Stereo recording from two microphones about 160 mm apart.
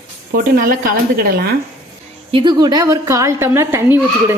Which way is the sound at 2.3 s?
25° right (ahead or behind).